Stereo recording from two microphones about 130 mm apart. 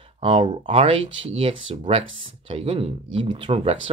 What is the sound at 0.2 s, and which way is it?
Speech, 45° right (ahead or behind).